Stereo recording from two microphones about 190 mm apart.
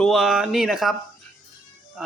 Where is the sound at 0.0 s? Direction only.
Centre (ahead or behind).